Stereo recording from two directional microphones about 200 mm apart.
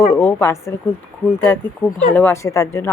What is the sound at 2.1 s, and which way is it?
Speech, 10° left (ahead or behind).